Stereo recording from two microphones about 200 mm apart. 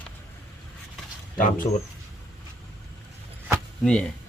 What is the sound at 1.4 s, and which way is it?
Speech, 40° left (ahead or behind).